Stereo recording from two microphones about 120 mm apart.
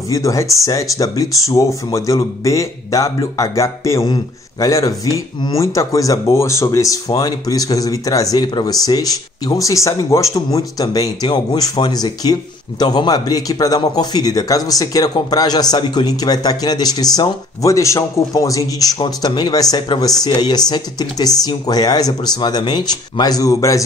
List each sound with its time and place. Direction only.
0.1 s speech: 25° left (ahead or behind)